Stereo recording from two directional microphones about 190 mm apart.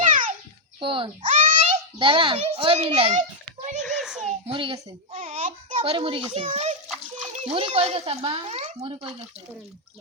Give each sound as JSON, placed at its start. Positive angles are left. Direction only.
{"t": 0.0, "sound": "babbling", "side_deg": -45}
{"t": 0.8, "sound": "a child's voice", "side_deg": -25}
{"t": 3.8, "sound": "children playing", "side_deg": 0}
{"t": 4.4, "sound": "speech", "side_deg": -30}
{"t": 5.1, "sound": "a sound", "side_deg": -40}
{"t": 6.8, "sound": "splash", "side_deg": 0}
{"t": 7.4, "sound": "speech", "side_deg": -30}